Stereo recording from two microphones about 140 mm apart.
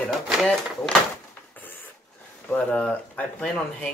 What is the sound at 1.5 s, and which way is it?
Printer, 15° left (ahead or behind).